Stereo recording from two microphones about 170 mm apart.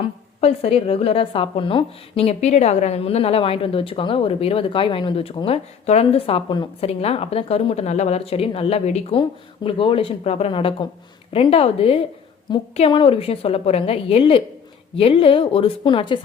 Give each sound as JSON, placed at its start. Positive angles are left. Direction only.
{"t": 0.0, "sound": "a woman's voice", "side_deg": 35}